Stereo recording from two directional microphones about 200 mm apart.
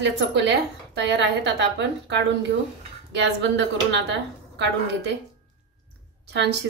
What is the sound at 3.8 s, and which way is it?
A woman's voice, 60° right (ahead or behind).